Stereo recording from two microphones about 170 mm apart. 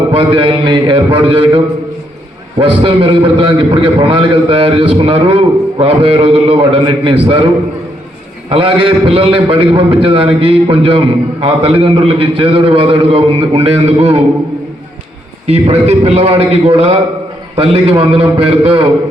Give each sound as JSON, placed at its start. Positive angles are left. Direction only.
{"t": 0.1, "sound": "a man's voice", "side_deg": -30}
{"t": 15.4, "sound": "a man's voice", "side_deg": -35}